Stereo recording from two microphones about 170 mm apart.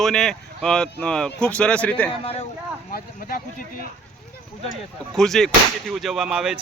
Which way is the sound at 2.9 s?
55° left (ahead or behind).